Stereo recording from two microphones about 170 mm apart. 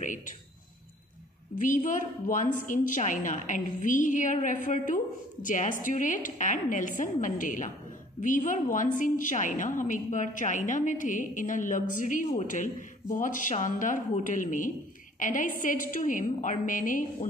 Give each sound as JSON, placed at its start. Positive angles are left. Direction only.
{"t": 1.6, "sound": "a woman's voice", "side_deg": 50}